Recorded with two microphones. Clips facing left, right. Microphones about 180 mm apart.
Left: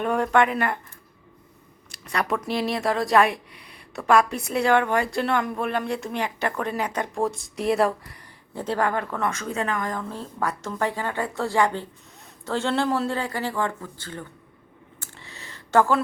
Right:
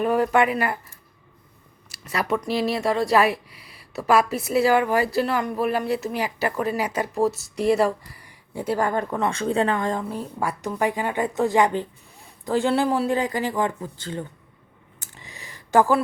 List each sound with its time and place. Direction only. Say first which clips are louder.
0.0 s speech: right 1 dB; 5° right (ahead or behind)
8.2 s speech: right 3 dB; 10° right (ahead or behind); by 10.1 s 25° right (ahead or behind)
10.1 s speech: right 1 dB; 15° right (ahead or behind)
14.9 s a sound: right 1 dB; 15° right (ahead or behind)